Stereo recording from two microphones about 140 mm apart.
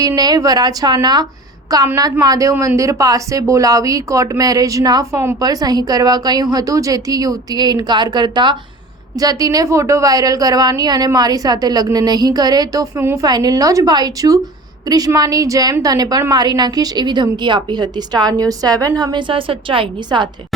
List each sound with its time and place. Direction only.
0.2 s a woman's voice: 25° right (ahead or behind)